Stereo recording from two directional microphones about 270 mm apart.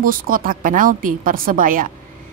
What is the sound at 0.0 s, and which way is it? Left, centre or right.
A woman's voice, right.